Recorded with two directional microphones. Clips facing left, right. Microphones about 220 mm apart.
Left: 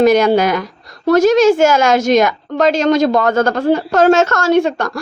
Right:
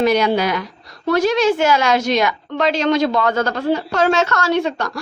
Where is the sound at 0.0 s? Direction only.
45° left (ahead or behind).